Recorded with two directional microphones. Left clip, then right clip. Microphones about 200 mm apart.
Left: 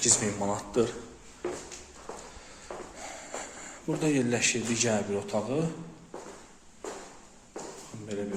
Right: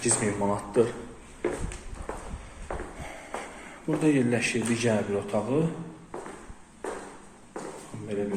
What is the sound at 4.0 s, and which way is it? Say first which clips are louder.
A man's voice: right 3 dB; 20° left (ahead or behind).